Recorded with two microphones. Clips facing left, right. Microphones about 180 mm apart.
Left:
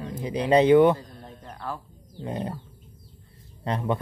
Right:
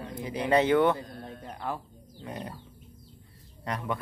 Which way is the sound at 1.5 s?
15° right (ahead or behind).